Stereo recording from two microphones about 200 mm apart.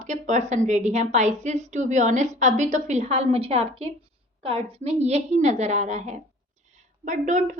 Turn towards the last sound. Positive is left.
turn(degrees=-35)  # may be behind; listen again after turning